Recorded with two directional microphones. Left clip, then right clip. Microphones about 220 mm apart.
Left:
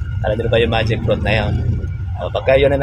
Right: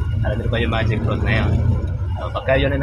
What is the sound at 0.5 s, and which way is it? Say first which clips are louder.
Speech: left 6 dB; 45° left (ahead or behind).